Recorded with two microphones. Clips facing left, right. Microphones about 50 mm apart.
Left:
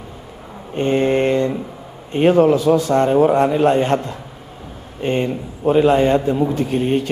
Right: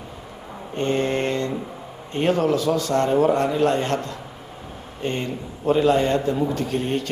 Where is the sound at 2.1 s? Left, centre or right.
Centre.